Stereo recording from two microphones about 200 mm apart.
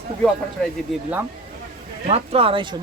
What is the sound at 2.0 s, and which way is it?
Speech, 30° right (ahead or behind).